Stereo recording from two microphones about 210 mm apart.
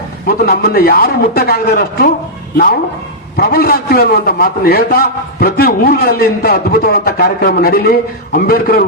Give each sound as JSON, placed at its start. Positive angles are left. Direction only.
{"t": 0.3, "sound": "a man's voice", "side_deg": 45}
{"t": 3.3, "sound": "a man's voice", "side_deg": 45}